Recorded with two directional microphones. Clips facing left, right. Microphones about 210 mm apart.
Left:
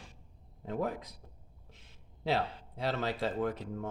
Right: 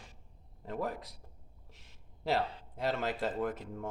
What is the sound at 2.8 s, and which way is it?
Speech, 10° right (ahead or behind).